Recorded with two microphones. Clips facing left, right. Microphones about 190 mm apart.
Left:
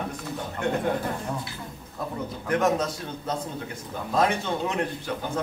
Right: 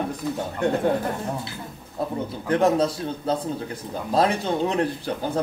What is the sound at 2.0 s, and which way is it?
A man's voice, 30° right (ahead or behind).